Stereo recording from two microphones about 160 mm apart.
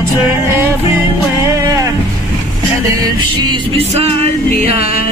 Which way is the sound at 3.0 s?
25° right (ahead or behind).